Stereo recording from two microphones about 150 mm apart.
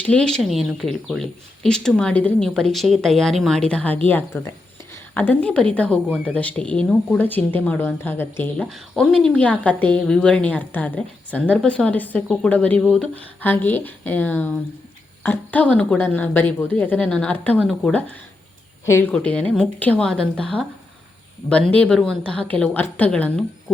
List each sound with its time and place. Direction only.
0.0 s a woman's voice: 5° left (ahead or behind)
8.5 s a woman's voice: 5° left (ahead or behind)
18.9 s a woman's voice: 20° left (ahead or behind)
21.7 s a woman's voice: 5° left (ahead or behind)